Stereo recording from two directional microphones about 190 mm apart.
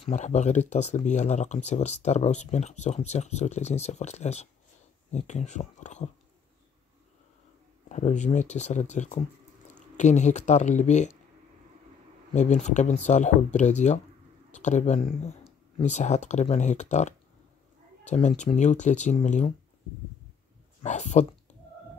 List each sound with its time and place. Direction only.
0.0 s speech: 40° left (ahead or behind)
7.9 s speech: 40° left (ahead or behind)
12.3 s speech: 40° left (ahead or behind)
20.8 s speech: 35° left (ahead or behind)